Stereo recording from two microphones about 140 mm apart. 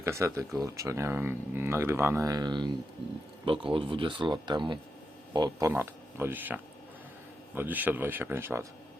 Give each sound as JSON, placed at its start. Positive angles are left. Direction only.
{"t": 0.0, "sound": "speech", "side_deg": -20}
{"t": 5.7, "sound": "speech", "side_deg": -15}